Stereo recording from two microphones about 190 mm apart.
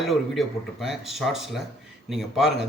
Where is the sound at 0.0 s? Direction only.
Centre (ahead or behind).